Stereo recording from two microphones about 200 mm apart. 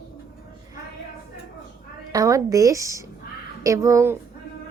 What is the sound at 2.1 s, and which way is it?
A woman's voice, 15° right (ahead or behind).